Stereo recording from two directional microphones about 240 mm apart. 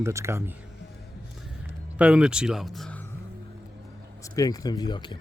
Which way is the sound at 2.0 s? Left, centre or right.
Centre.